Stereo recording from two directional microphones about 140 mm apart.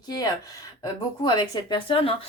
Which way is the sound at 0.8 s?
30° left (ahead or behind).